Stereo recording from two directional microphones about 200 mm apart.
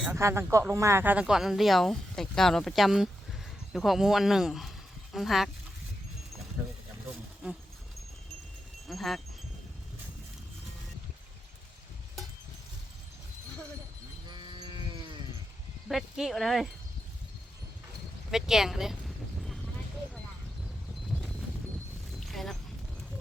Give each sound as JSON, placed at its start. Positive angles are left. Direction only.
{"t": 0.0, "sound": "speech", "side_deg": -10}
{"t": 8.9, "sound": "speech", "side_deg": 0}
{"t": 14.3, "sound": "sheep", "side_deg": -20}
{"t": 15.9, "sound": "speech", "side_deg": 0}
{"t": 18.3, "sound": "a sound", "side_deg": 0}
{"t": 21.1, "sound": "clip-clop", "side_deg": 0}
{"t": 22.2, "sound": "a sound", "side_deg": 0}